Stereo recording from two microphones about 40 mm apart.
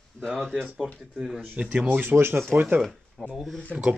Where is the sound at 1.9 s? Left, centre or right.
Right.